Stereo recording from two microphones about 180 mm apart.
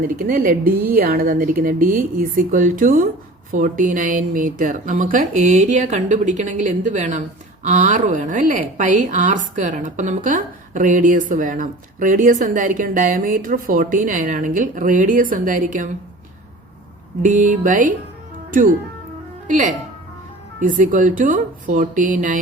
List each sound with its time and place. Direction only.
0.0 s speech: 55° right (ahead or behind)
17.2 s speech: 45° right (ahead or behind)
19.5 s speech: 45° right (ahead or behind)